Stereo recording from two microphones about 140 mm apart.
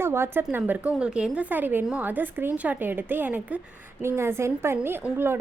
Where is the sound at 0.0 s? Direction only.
15° right (ahead or behind).